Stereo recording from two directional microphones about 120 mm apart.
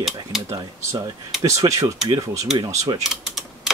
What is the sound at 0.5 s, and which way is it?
Speech, 25° right (ahead or behind).